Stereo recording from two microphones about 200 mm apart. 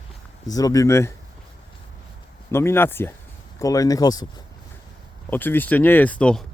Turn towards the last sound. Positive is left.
turn(degrees=5)  # may be behind; listen again after turning